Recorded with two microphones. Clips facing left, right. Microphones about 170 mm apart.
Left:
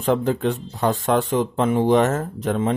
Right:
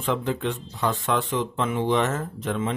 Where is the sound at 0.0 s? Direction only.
40° left (ahead or behind).